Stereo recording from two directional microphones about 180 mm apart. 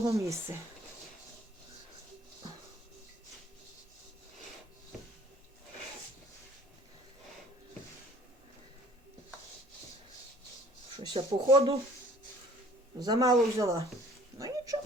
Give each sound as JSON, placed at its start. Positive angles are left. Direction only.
{"t": 0.0, "sound": "speech", "side_deg": -15}
{"t": 10.9, "sound": "speech", "side_deg": -25}
{"t": 13.0, "sound": "speech", "side_deg": -20}
{"t": 14.3, "sound": "a sound", "side_deg": -20}